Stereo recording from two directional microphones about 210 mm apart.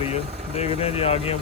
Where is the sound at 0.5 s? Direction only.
30° left (ahead or behind).